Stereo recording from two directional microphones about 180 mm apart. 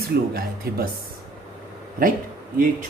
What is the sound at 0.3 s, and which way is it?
Speech, 55° right (ahead or behind).